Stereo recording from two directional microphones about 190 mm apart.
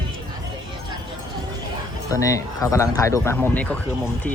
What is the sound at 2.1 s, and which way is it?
Speech, 15° left (ahead or behind).